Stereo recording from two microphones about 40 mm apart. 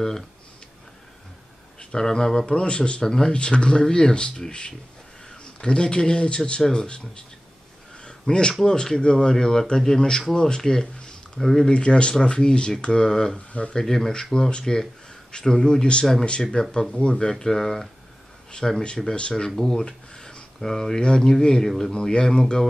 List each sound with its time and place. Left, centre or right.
1.8 s speech: centre
3.1 s speech: centre
3.3 s speech: left
6.6 s speech: centre
8.0 s a sound: left
9.0 s speech: left
11.7 s speech: left
13.5 s speech: left
13.7 s speech: centre
17.3 s speech: centre
19.5 s speech: centre
19.8 s a sound: centre
21.0 s speech: centre
21.9 s speech: centre